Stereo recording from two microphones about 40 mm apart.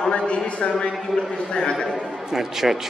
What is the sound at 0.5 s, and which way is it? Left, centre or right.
A man's voice, left.